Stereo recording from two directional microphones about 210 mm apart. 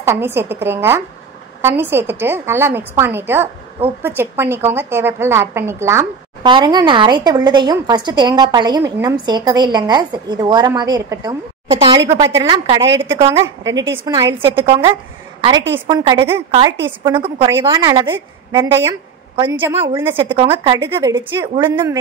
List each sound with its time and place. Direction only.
0.0 s a woman's voice: 10° right (ahead or behind)
15.9 s a woman's voice: 15° right (ahead or behind)
20.1 s a woman's voice: 25° right (ahead or behind)
20.8 s a woman's voice: 15° right (ahead or behind)